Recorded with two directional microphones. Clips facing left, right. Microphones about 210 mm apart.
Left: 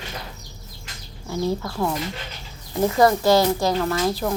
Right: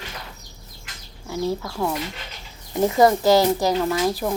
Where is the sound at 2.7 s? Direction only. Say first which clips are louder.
Right 1 dB; 20° right (ahead or behind).